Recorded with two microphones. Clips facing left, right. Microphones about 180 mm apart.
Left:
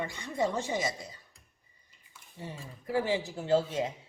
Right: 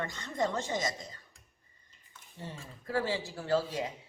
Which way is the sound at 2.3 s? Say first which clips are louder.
Left 2 dB; 10° left (ahead or behind).